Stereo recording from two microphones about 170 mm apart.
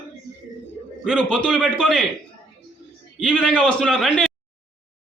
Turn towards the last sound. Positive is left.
turn(degrees=0)  # may be behind; listen again after turning